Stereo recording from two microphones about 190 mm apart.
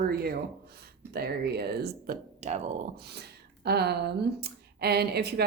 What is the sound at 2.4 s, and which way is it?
Speech, 35° right (ahead or behind).